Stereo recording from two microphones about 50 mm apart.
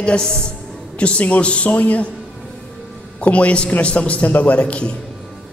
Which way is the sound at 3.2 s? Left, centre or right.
Left.